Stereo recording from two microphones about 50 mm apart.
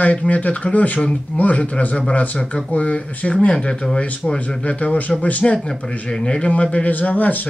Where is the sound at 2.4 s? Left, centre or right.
Centre.